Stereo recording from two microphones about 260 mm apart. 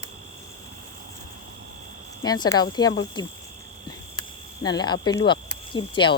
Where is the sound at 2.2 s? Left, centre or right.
Centre.